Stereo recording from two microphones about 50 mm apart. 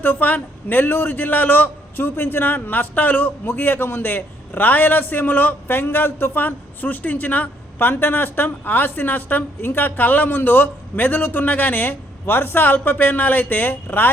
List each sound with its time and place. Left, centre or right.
0.0 s a man's voice: left